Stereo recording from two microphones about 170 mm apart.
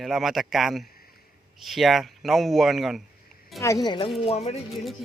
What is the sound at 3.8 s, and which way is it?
Speech, 25° left (ahead or behind).